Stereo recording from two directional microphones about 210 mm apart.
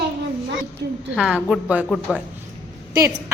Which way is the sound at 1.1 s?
Centre (ahead or behind).